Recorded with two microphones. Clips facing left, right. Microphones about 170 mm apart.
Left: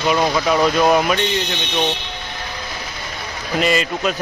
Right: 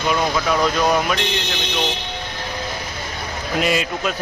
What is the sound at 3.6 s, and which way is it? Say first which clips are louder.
Speech: left 3 dB; 5° right (ahead or behind).